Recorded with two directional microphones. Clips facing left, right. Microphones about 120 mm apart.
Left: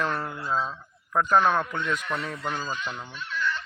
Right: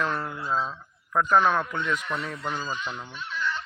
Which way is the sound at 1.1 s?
35° left (ahead or behind).